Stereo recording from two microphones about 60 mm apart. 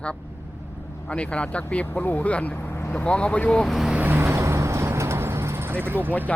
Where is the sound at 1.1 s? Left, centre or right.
Centre.